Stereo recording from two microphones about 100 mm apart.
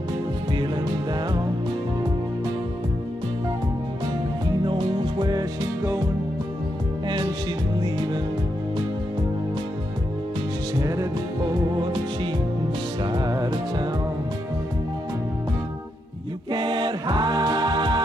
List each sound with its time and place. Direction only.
4.6 s music: 55° right (ahead or behind); by 6.0 s 40° right (ahead or behind)
7.8 s music: 45° right (ahead or behind)
10.8 s music: 35° right (ahead or behind)
11.4 s music: 50° right (ahead or behind)
16.5 s music: 45° right (ahead or behind)